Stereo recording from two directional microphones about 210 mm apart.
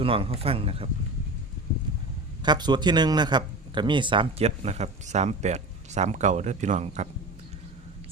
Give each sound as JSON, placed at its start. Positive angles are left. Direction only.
{"t": 0.0, "sound": "speech", "side_deg": -25}
{"t": 2.4, "sound": "a man's voice", "side_deg": -20}